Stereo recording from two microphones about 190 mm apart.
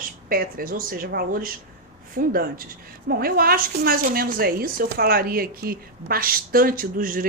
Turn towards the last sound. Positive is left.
turn(degrees=-45)  # may be behind; listen again after turning